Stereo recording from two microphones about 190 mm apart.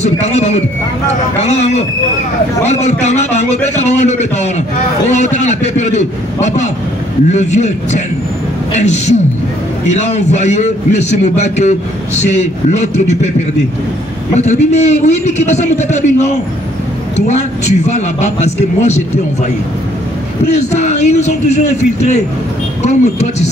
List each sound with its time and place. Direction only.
0.0 s a man's voice: 35° left (ahead or behind)
14.3 s a man's voice: 35° left (ahead or behind)
20.5 s a man's voice: 35° left (ahead or behind)